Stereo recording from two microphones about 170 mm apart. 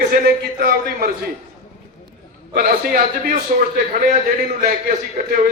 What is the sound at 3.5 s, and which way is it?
Speech, 55° right (ahead or behind).